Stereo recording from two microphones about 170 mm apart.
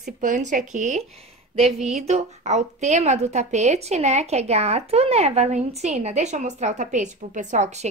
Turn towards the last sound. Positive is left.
turn(degrees=-45)  # may be behind; listen again after turning